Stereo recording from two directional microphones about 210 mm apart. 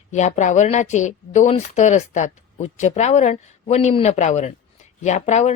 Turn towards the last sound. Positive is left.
turn(degrees=35)  # may be behind; listen again after turning